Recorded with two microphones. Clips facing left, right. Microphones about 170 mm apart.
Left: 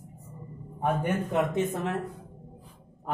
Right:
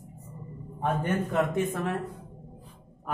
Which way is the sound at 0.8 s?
15° left (ahead or behind).